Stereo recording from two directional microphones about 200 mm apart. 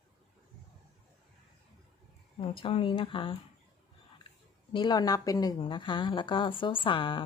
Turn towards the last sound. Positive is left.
turn(degrees=25)  # may be behind; listen again after turning